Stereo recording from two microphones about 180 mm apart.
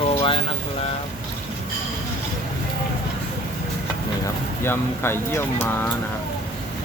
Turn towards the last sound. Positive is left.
turn(degrees=15)  # may be behind; listen again after turning